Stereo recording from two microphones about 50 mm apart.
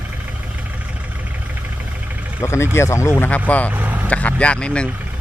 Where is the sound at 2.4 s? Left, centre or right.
Left.